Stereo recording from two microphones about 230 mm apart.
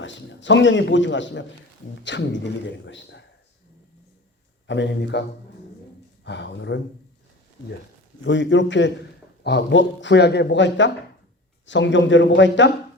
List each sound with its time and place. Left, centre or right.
0.0 s a man's voice: left
4.6 s speech: left
6.2 s speech: left
8.2 s speech: left